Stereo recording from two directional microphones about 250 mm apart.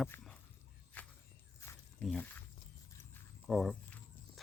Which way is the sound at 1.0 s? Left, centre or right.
Centre.